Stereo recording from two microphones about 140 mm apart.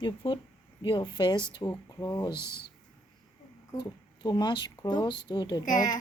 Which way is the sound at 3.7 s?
30° left (ahead or behind).